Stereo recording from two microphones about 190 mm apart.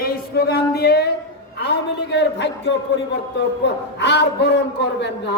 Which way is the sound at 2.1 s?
65° left (ahead or behind).